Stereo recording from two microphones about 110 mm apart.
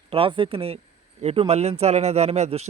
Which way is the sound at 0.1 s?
55° right (ahead or behind).